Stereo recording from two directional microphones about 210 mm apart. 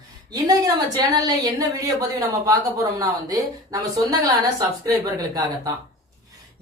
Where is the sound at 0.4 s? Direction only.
15° right (ahead or behind).